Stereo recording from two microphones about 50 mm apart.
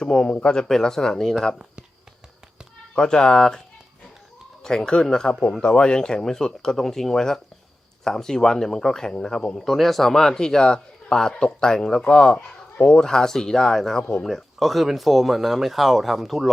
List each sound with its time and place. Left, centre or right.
0.0 s a man's voice: centre
2.9 s a man's voice: centre
4.6 s a man's voice: centre
9.6 s a man's voice: centre